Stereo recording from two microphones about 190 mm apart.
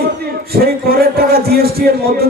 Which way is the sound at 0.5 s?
55° right (ahead or behind).